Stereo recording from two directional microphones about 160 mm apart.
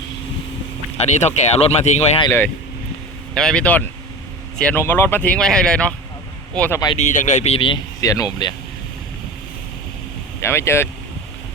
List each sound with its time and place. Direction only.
0.9 s speech: 45° left (ahead or behind)
3.3 s speech: 5° left (ahead or behind)
6.9 s speech: 50° left (ahead or behind)
8.0 s speech: 25° left (ahead or behind)
10.4 s speech: 15° left (ahead or behind)